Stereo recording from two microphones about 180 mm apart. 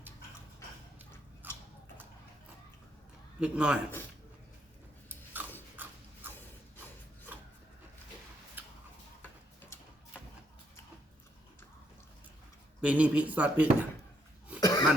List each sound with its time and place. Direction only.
1.4 s biting: 10° right (ahead or behind)
3.4 s speech: 5° right (ahead or behind)
5.0 s biting: 10° right (ahead or behind)
5.7 s a sound: 10° right (ahead or behind)
12.8 s speech: 5° right (ahead or behind)
14.6 s throat clearing: 20° left (ahead or behind)